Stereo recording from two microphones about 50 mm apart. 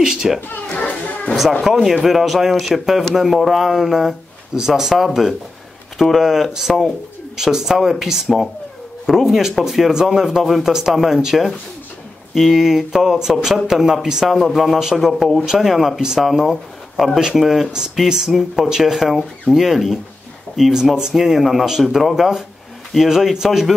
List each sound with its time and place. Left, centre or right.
0.0 s speech: centre
0.7 s children playing: left
1.6 s speech: centre